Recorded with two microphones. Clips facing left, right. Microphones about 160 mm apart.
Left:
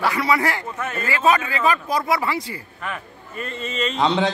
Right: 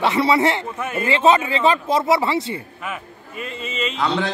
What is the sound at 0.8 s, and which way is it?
Speech, 10° right (ahead or behind).